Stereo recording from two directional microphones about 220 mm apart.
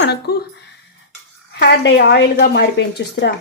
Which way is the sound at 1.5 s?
50° left (ahead or behind).